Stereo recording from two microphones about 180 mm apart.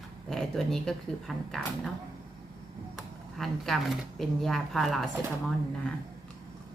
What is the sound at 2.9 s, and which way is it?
Speech, centre (ahead or behind).